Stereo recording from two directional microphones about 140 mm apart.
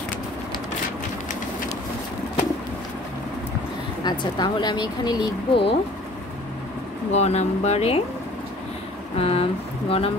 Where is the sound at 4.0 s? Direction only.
30° left (ahead or behind).